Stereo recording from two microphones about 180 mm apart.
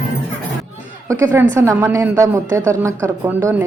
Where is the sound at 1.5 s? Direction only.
15° right (ahead or behind).